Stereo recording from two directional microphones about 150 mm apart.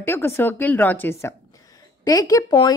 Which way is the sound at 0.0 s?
15° left (ahead or behind).